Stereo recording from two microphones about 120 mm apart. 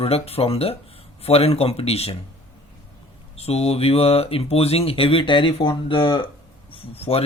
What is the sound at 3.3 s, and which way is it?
Speech, 60° left (ahead or behind).